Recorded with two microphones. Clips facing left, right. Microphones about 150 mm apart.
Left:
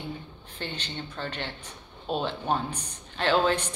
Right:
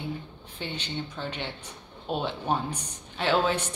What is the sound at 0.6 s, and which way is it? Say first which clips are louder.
Speech: right 2 dB; 10° right (ahead or behind).